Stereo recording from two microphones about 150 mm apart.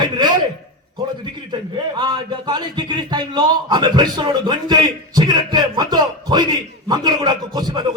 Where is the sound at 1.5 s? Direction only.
30° right (ahead or behind).